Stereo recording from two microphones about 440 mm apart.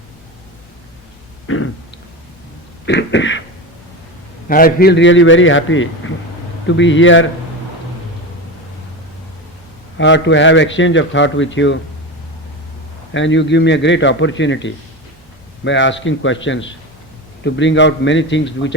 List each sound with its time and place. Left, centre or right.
1.5 s a man's voice: left
2.8 s throat clearing: left
4.4 s a man's voice: centre
10.0 s a man's voice: left
13.1 s a man's voice: left